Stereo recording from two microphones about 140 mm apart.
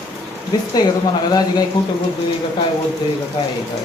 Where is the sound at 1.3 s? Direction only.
30° left (ahead or behind).